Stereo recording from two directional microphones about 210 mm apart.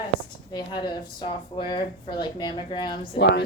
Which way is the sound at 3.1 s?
50° left (ahead or behind).